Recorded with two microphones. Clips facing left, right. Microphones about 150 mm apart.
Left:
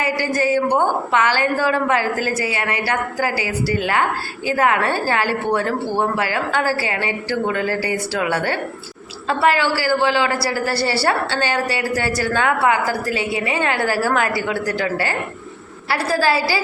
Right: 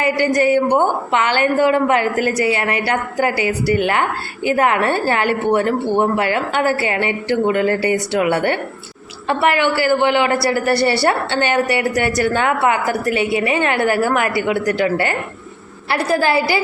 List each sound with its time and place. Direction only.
0.4 s a woman's voice: 20° right (ahead or behind)